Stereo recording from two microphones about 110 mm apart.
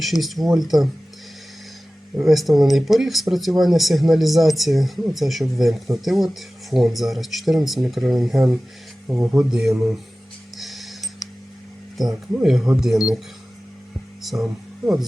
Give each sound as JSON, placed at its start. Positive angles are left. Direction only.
{"t": 0.0, "sound": "speech", "side_deg": 0}
{"t": 2.2, "sound": "speech", "side_deg": 0}
{"t": 10.6, "sound": "a sound", "side_deg": 0}
{"t": 12.3, "sound": "speech", "side_deg": -5}